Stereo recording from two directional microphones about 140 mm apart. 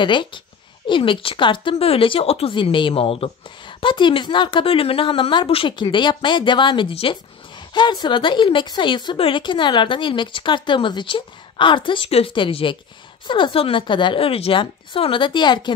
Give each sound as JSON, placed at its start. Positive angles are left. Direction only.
{"t": 0.0, "sound": "speech", "side_deg": 35}